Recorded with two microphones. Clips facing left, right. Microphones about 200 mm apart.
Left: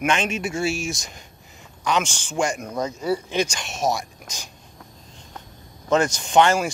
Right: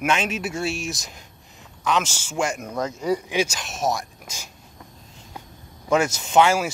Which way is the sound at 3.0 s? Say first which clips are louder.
Right 1 dB; 10° right (ahead or behind).